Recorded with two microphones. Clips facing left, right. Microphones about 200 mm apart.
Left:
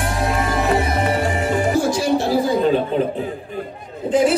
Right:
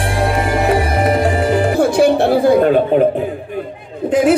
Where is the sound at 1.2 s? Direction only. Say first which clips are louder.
Right 5 dB; 60° right (ahead or behind).